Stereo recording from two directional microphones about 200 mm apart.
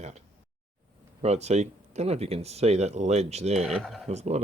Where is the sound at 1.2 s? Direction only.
35° right (ahead or behind).